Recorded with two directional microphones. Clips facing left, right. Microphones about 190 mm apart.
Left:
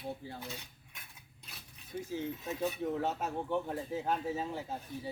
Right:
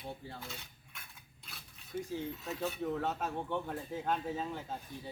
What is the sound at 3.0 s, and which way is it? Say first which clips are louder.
A man's voice: left 1 dB; 5° left (ahead or behind).